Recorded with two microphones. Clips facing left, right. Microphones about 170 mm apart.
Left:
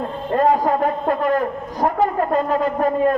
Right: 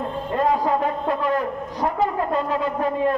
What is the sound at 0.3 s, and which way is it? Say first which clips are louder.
A man's voice: left 4 dB; 50° left (ahead or behind).